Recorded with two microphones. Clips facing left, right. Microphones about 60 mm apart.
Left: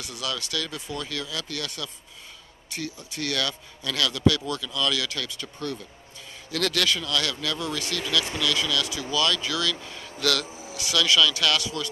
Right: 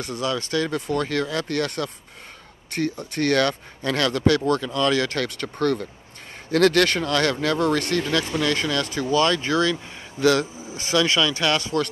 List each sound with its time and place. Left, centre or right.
0.0 s speech: right
0.7 s speech: right
6.5 s speech: right